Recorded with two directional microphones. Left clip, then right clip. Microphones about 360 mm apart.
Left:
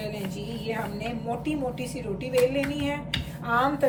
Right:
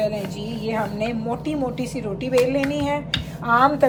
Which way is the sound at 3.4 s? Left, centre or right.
Centre.